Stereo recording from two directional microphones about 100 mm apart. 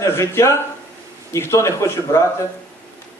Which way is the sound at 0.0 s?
30° left (ahead or behind).